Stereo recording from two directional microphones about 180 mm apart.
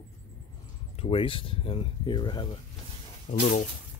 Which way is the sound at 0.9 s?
35° left (ahead or behind).